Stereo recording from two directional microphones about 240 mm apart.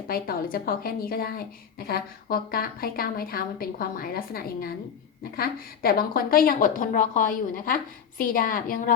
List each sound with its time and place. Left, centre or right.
0.1 s a woman's voice: left